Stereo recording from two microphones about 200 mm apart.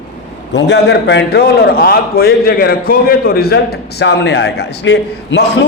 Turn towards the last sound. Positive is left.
turn(degrees=60)  # may be behind; listen again after turning